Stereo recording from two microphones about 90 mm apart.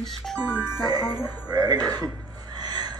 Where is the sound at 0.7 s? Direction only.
45° right (ahead or behind).